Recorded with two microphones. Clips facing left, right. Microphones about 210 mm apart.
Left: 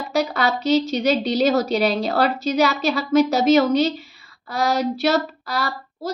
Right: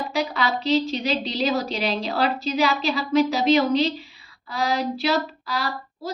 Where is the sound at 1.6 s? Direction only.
45° left (ahead or behind).